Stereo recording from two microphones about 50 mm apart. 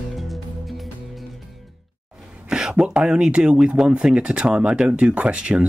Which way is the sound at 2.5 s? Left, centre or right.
Centre.